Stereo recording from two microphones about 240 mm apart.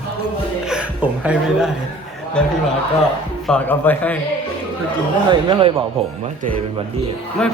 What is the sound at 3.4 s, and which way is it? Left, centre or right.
Speech, centre.